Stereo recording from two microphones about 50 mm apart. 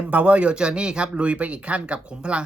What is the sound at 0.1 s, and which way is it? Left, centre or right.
Speech, right.